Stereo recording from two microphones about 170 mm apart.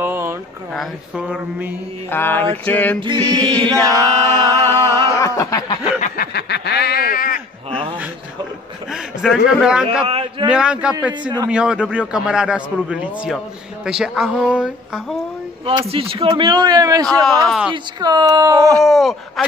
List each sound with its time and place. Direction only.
0.0 s a sound: 15° right (ahead or behind)
2.0 s mantra: 10° left (ahead or behind)
3.3 s speech: 25° right (ahead or behind)
4.3 s a sound: 15° left (ahead or behind)
5.9 s a sound: 45° left (ahead or behind)
6.3 s snicker: 75° left (ahead or behind); by 7.3 s 55° left (ahead or behind)
9.2 s a man's voice: centre (ahead or behind)
10.0 s a man's voice: 35° right (ahead or behind)
10.5 s a man's voice: 5° right (ahead or behind)
15.6 s speech: 35° right (ahead or behind)
17.0 s a man's voice: centre (ahead or behind)
18.0 s speech: 20° right (ahead or behind)
18.8 s a man's voice: centre (ahead or behind)